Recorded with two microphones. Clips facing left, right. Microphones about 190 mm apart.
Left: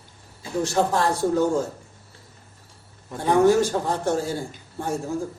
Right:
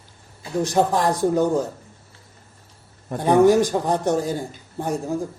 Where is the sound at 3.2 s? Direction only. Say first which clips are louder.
Right 3 dB; 15° right (ahead or behind).